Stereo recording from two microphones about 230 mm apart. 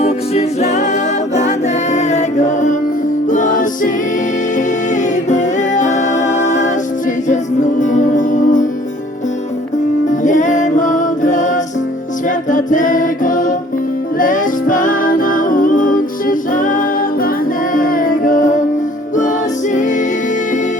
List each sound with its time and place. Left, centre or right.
0.0 s music: left
7.8 s music: left
10.1 s music: left
19.7 s music: left